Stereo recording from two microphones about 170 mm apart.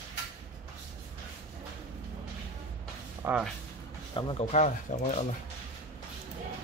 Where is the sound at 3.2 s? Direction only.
10° right (ahead or behind).